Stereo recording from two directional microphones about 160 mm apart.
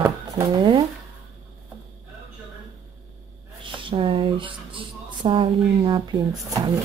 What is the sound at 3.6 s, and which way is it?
Speech, 30° right (ahead or behind).